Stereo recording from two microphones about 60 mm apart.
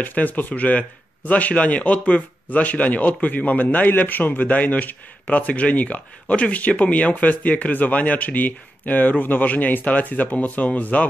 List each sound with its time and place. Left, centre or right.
0.0 s speech: left